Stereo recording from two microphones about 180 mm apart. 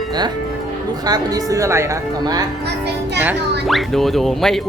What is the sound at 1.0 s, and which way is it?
Speech, 20° right (ahead or behind).